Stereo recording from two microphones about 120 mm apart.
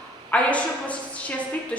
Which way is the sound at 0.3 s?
10° left (ahead or behind).